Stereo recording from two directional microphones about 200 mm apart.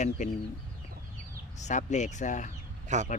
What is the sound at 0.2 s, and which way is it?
Speech, 35° left (ahead or behind).